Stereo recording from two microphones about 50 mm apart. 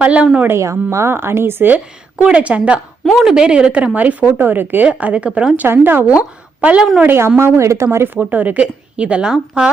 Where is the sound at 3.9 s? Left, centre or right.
Right.